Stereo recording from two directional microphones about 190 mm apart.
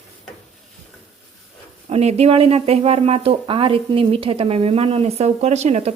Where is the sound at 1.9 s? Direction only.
35° right (ahead or behind).